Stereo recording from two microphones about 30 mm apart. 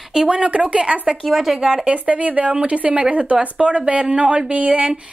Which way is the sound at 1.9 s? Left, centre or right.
Right.